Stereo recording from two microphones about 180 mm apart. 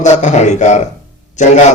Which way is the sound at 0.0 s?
40° left (ahead or behind).